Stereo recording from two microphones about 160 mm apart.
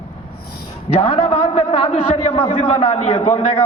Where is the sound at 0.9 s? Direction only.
40° left (ahead or behind).